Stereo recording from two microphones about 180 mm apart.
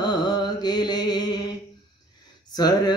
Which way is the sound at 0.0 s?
25° left (ahead or behind).